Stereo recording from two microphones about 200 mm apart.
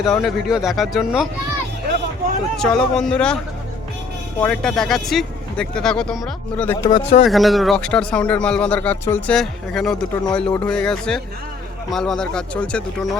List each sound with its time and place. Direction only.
0.0 s a man's voice: centre (ahead or behind)
2.6 s a man's voice: 5° left (ahead or behind)
4.4 s a man's voice: 5° left (ahead or behind)
6.9 s speech: 30° left (ahead or behind)
7.3 s a man's voice: centre (ahead or behind)